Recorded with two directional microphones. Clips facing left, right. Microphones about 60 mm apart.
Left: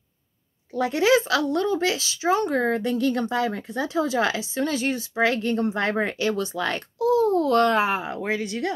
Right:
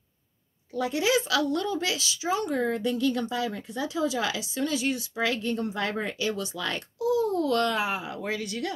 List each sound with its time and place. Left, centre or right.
0.7 s speech: left